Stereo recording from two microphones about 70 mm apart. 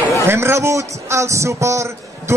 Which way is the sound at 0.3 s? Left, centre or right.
Right.